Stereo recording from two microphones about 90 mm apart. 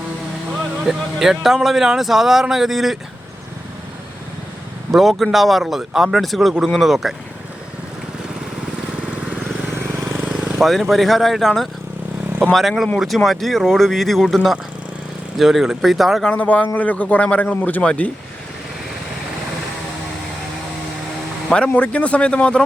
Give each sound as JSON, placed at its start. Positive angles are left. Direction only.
{"t": 0.9, "sound": "speech", "side_deg": -5}
{"t": 4.9, "sound": "speech", "side_deg": 0}
{"t": 9.7, "sound": "vehicle", "side_deg": -30}
{"t": 10.2, "sound": "vehicle", "side_deg": -15}
{"t": 10.5, "sound": "speech", "side_deg": 0}
{"t": 16.3, "sound": "speech", "side_deg": 15}
{"t": 21.5, "sound": "speech", "side_deg": 10}